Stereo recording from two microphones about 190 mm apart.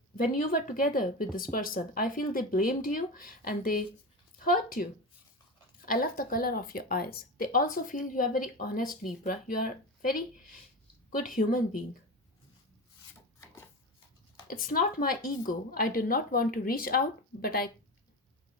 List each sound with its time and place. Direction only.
0.2 s speech: 45° left (ahead or behind)
14.5 s speech: 45° left (ahead or behind)